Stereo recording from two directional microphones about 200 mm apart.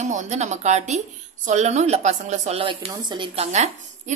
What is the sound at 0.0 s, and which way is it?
Speech, 35° right (ahead or behind).